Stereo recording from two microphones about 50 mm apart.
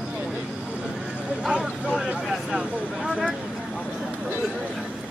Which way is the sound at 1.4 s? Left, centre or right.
Centre.